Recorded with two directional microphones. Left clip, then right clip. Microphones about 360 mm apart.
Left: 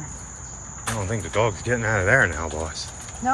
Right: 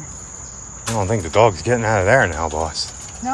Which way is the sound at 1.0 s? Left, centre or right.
Centre.